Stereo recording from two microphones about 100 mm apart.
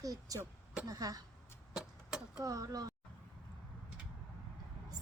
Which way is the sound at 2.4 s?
35° right (ahead or behind).